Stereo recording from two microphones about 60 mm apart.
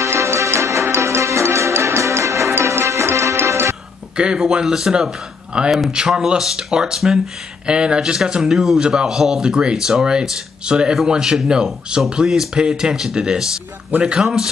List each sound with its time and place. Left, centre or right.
0.0 s music: right
4.2 s speech: centre